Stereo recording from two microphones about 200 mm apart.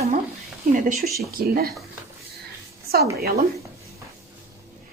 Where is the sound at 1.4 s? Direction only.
50° right (ahead or behind).